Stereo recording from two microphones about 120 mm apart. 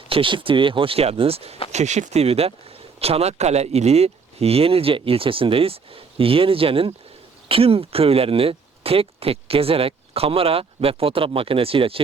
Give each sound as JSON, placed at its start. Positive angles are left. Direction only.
{"t": 0.1, "sound": "speech", "side_deg": -45}
{"t": 1.7, "sound": "speech", "side_deg": -75}